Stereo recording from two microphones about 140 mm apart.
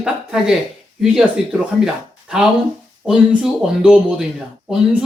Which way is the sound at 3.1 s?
5° right (ahead or behind).